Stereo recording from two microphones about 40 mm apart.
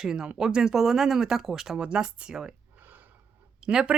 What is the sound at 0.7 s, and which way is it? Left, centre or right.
Speech, centre.